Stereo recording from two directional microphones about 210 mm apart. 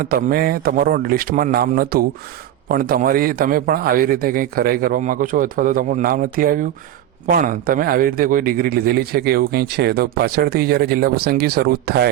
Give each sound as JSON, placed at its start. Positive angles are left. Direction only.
{"t": 0.0, "sound": "a man's voice", "side_deg": -45}